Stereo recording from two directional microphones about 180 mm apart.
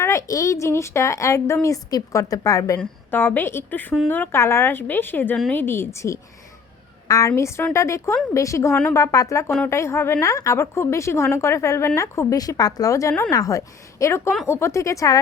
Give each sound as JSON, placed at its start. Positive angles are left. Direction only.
{"t": 0.0, "sound": "speech", "side_deg": 15}